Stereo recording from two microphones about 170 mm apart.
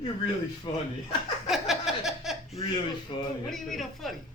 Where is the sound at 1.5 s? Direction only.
Centre (ahead or behind).